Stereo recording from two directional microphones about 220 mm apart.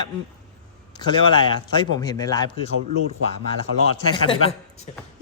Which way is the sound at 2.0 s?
15° left (ahead or behind).